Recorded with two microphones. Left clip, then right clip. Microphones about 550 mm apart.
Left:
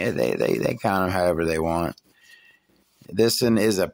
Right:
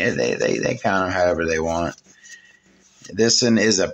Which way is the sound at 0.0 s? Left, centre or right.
Left.